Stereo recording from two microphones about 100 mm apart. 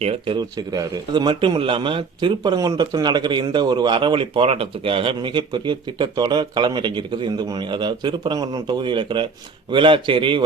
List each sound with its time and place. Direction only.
0.0 s speech: 75° right (ahead or behind)
0.3 s a man's voice: 40° right (ahead or behind); by 10.4 s 55° right (ahead or behind)